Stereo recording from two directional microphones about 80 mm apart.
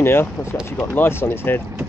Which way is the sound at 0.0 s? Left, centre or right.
Left.